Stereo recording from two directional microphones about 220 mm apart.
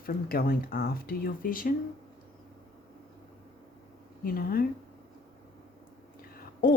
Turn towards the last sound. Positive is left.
turn(degrees=40)  # may be behind; listen again after turning